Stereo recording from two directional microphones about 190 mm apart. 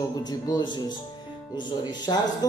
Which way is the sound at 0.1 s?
20° left (ahead or behind).